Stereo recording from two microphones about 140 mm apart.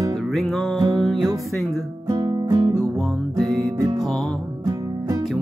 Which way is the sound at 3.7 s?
25° right (ahead or behind).